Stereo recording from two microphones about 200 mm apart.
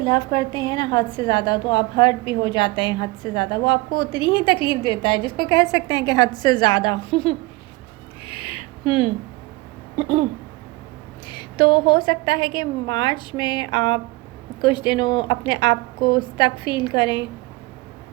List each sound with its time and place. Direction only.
0.0 s a woman's voice: 20° left (ahead or behind)
8.2 s a sound: 25° left (ahead or behind)
11.3 s a woman's voice: 20° left (ahead or behind)